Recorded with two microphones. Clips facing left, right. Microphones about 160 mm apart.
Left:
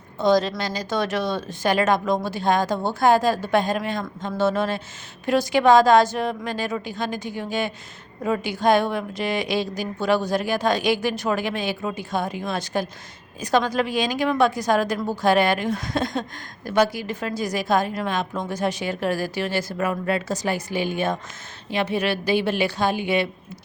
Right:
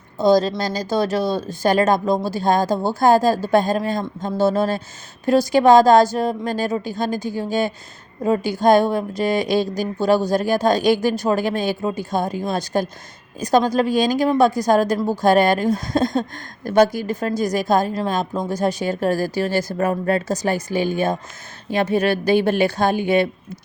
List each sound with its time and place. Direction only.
0.2 s a woman's voice: 35° right (ahead or behind)